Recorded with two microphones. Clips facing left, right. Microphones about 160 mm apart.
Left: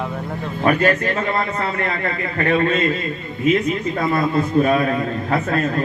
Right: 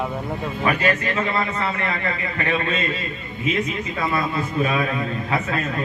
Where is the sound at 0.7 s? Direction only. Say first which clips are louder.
Left 5 dB; 45° left (ahead or behind).